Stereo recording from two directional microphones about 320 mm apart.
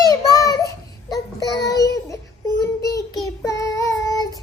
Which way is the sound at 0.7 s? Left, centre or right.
Centre.